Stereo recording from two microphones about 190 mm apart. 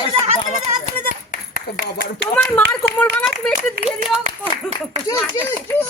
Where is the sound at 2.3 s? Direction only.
10° left (ahead or behind).